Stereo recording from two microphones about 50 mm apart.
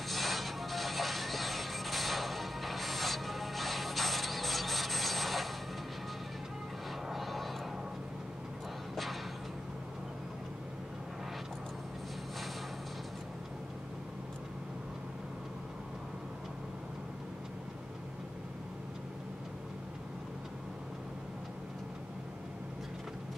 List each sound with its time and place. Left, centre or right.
0.1 s music: centre
7.1 s music: centre
8.9 s music: centre